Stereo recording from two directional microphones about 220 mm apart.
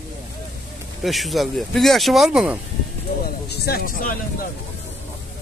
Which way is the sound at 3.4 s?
45° left (ahead or behind).